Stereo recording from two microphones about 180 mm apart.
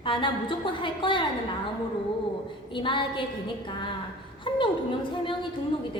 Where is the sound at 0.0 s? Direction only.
25° left (ahead or behind).